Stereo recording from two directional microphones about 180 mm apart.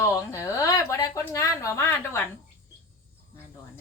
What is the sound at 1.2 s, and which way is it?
A woman's voice, 15° left (ahead or behind).